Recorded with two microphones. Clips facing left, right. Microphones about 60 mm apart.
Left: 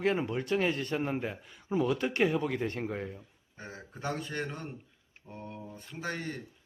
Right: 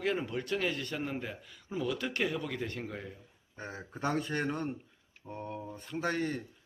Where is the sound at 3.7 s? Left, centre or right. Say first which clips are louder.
Right 3 dB; centre.